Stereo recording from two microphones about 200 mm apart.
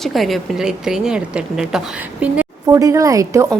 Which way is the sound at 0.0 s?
Centre (ahead or behind).